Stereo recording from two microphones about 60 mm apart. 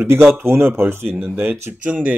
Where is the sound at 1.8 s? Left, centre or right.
Right.